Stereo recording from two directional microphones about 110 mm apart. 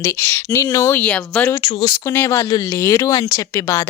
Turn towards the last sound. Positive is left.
turn(degrees=30)  # may be behind; listen again after turning